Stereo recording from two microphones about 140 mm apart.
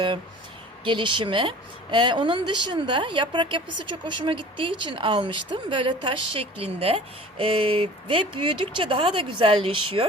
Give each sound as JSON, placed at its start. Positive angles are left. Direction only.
{"t": 0.9, "sound": "speech", "side_deg": -35}